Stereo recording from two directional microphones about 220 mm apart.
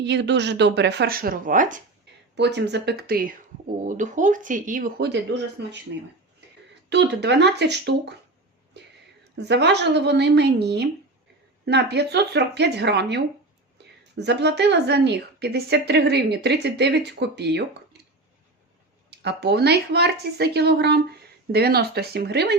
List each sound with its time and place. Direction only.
0.0 s a woman's voice: 50° right (ahead or behind)
2.3 s a woman's voice: 50° right (ahead or behind)
6.9 s a woman's voice: 50° right (ahead or behind)
8.7 s a sound: 50° right (ahead or behind)
9.4 s a woman's voice: 50° right (ahead or behind)
19.1 s a woman's voice: 50° right (ahead or behind)